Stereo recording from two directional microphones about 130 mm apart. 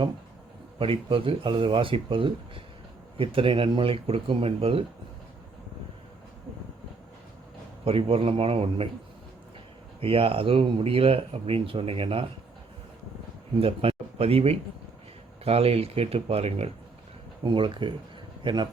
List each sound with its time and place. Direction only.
0.8 s speech: 45° right (ahead or behind)
7.9 s speech: 45° right (ahead or behind)
10.0 s speech: 45° right (ahead or behind)
13.6 s speech: 50° right (ahead or behind)